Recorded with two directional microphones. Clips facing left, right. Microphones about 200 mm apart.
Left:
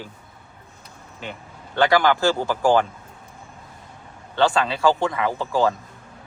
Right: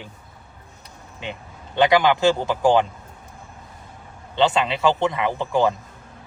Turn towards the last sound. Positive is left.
turn(degrees=-20)  # may be behind; listen again after turning